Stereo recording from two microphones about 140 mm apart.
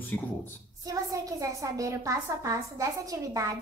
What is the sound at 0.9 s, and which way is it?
A woman's voice, 25° right (ahead or behind).